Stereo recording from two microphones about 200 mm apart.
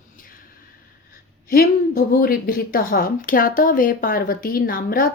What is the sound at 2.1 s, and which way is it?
Speech, 45° left (ahead or behind).